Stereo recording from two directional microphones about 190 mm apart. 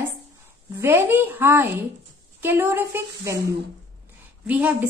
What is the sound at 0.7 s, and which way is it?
A woman's voice, 15° right (ahead or behind).